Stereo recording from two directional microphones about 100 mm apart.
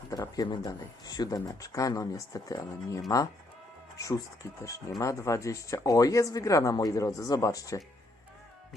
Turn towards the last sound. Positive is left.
turn(degrees=35)  # may be behind; listen again after turning